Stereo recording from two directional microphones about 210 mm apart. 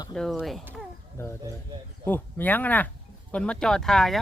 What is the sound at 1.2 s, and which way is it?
Speech, 10° left (ahead or behind).